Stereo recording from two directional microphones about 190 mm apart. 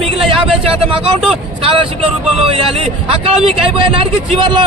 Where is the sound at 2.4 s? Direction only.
30° right (ahead or behind).